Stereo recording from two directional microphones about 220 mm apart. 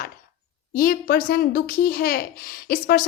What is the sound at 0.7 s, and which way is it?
A woman's voice, 40° left (ahead or behind).